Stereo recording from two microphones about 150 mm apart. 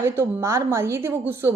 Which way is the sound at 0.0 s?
15° right (ahead or behind).